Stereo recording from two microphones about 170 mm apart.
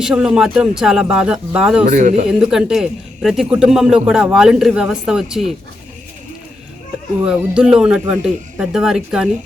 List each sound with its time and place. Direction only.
0.0 s a man's voice: 5° right (ahead or behind)
1.9 s speech: 50° right (ahead or behind)
2.4 s a man's voice: 5° right (ahead or behind)
7.3 s a man's voice: 5° right (ahead or behind)